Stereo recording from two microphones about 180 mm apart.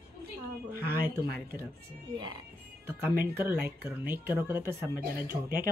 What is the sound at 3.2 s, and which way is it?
Speech, 10° right (ahead or behind).